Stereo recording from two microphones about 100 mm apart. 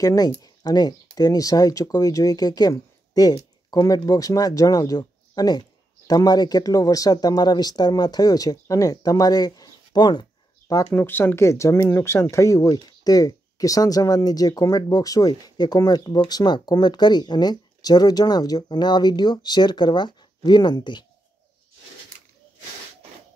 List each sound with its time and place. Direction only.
0.0 s speech: 40° left (ahead or behind)
10.9 s speech: 20° left (ahead or behind); by 21.0 s 50° left (ahead or behind)